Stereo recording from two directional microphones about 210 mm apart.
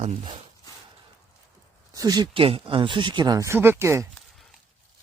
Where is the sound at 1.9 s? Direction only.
20° right (ahead or behind).